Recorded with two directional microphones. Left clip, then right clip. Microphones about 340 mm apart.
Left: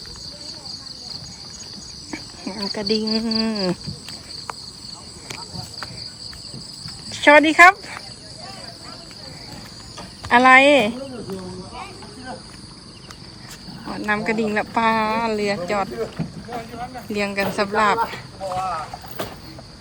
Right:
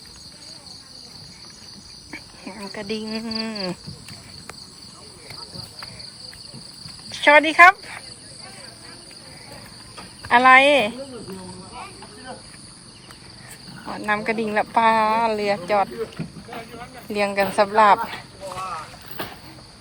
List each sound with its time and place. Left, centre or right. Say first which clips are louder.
2.0 s speech: left 4 dB; centre
7.1 s speech: left 2 dB; centre
10.2 s speech: left 1 dB; centre
13.8 s speech: left 1 dB; centre
17.1 s speech: right 2 dB; centre
18.4 s a sound: left 6 dB; left